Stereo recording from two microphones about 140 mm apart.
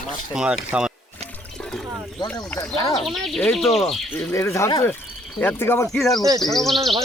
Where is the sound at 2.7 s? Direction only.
25° left (ahead or behind).